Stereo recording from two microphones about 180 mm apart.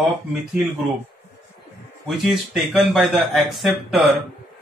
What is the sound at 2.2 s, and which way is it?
Speech, centre (ahead or behind).